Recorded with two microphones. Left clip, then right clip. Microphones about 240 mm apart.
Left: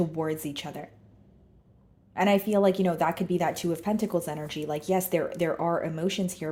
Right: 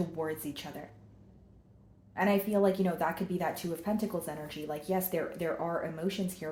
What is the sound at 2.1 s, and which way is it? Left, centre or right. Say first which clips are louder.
Speech: left 5 dB; left.